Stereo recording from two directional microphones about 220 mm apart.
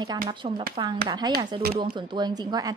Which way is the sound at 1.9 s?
20° right (ahead or behind).